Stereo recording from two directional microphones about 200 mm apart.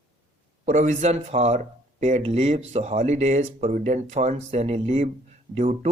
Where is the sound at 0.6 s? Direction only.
40° right (ahead or behind).